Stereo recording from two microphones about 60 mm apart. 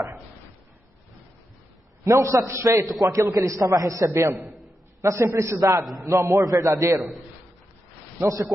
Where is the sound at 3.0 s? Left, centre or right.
Right.